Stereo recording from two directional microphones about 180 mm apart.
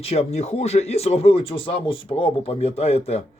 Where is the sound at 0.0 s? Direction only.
35° left (ahead or behind).